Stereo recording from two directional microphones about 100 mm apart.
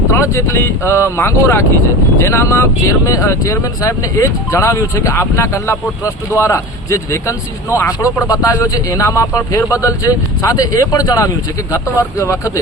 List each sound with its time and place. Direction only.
0.1 s speech: 25° left (ahead or behind)